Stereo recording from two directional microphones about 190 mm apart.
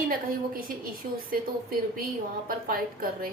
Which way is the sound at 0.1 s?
50° right (ahead or behind).